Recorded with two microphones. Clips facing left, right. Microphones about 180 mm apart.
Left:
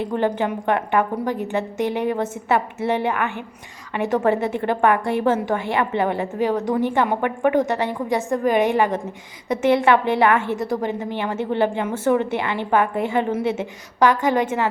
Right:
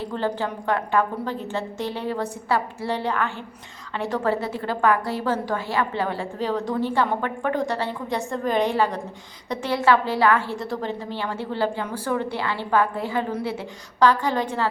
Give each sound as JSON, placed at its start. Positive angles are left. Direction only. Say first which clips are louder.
{"t": 0.0, "sound": "a woman's voice", "louder": "left 5 dB", "side_deg": 20}